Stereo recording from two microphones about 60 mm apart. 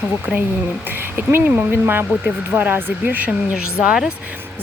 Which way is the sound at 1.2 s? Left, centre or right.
Right.